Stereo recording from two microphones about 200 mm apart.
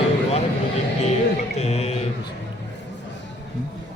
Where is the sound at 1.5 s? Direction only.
30° left (ahead or behind).